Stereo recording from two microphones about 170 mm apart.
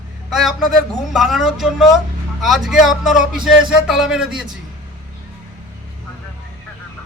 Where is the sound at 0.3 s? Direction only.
Centre (ahead or behind).